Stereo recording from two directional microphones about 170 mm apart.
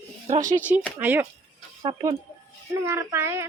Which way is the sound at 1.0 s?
10° right (ahead or behind).